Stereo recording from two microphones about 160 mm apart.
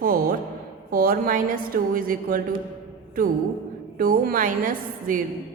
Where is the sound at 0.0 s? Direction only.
60° right (ahead or behind).